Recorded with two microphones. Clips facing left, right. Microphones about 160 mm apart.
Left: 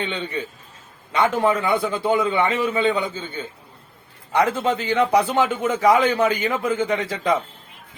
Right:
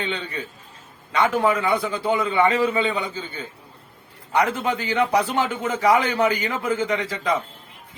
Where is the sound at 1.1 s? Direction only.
25° left (ahead or behind).